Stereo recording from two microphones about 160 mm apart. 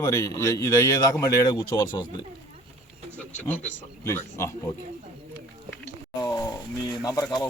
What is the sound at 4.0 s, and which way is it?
Speech, 15° left (ahead or behind).